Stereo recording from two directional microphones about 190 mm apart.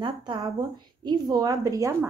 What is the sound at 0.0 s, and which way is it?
Speech, 25° right (ahead or behind).